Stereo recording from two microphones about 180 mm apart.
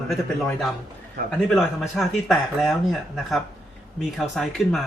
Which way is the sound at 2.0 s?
Centre (ahead or behind).